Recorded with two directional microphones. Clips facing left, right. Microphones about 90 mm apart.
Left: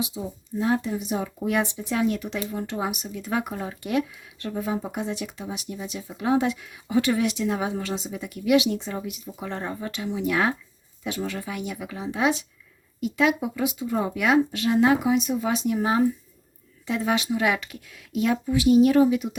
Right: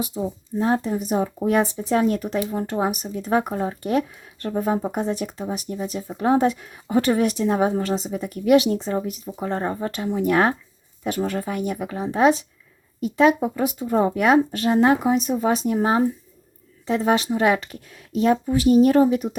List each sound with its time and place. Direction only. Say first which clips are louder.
0.2 s speech: right 4 dB; 35° right (ahead or behind)